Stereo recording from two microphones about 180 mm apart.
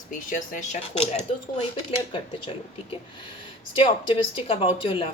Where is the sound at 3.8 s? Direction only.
30° left (ahead or behind).